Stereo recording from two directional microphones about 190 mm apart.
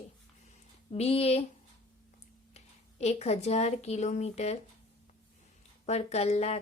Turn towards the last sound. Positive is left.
turn(degrees=35)  # may be behind; listen again after turning